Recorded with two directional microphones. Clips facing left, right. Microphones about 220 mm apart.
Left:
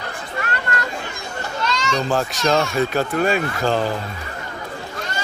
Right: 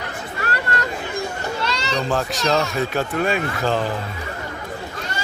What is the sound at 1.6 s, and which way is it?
Children playing, 35° right (ahead or behind).